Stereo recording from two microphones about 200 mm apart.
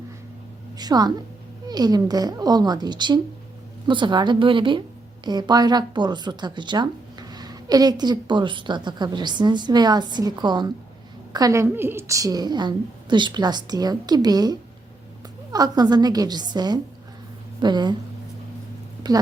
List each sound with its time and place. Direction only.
0.8 s a woman's voice: 20° right (ahead or behind)
15.5 s a woman's voice: 20° right (ahead or behind)